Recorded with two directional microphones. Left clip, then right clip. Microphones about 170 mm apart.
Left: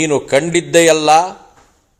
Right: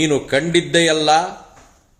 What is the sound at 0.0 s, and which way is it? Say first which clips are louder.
A man's voice: left 3 dB; 30° left (ahead or behind).